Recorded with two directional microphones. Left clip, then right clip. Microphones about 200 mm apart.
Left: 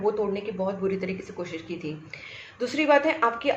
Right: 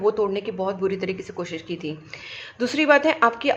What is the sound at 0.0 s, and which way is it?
Speech, 50° right (ahead or behind).